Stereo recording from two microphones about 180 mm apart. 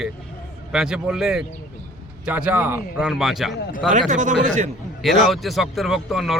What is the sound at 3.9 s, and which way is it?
Speech, 45° right (ahead or behind).